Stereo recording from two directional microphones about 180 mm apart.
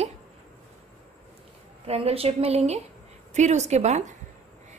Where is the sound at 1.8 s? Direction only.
35° right (ahead or behind).